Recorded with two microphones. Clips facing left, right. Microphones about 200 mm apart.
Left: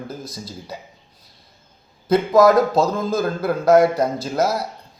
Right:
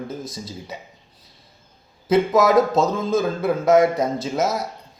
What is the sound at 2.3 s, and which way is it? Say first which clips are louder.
A man's voice: left 5 dB; 5° right (ahead or behind).